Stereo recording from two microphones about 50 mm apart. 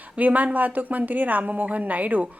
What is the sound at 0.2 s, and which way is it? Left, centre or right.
A woman's voice, right.